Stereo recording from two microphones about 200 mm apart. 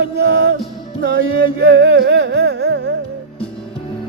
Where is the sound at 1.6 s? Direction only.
60° right (ahead or behind).